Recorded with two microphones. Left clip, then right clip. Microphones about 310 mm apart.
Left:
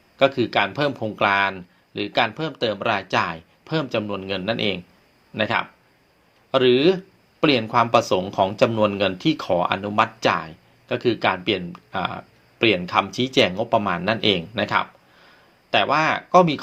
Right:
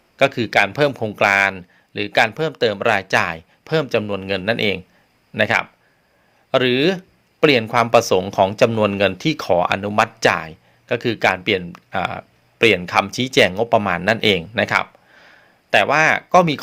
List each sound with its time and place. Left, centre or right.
0.2 s speech: right